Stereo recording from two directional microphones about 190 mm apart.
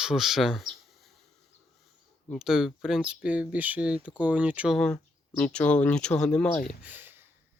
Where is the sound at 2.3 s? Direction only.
Centre (ahead or behind).